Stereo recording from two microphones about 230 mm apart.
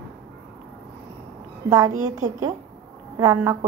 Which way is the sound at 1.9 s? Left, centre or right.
Right.